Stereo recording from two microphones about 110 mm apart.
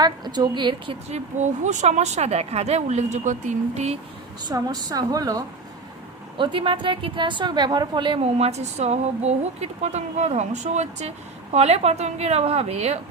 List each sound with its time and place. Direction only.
0.0 s a woman's voice: 40° right (ahead or behind)
1.1 s speech: 90° right
4.4 s a woman's voice: 35° right (ahead or behind)
6.3 s a woman's voice: 50° right (ahead or behind)
8.2 s speech: 75° right (ahead or behind); by 11.1 s 90° right
11.5 s a woman's voice: 70° right (ahead or behind)